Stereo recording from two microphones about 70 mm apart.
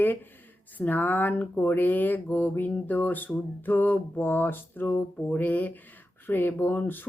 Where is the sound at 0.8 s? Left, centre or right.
Left.